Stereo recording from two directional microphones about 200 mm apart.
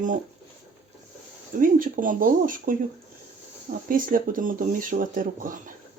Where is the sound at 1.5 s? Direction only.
40° right (ahead or behind).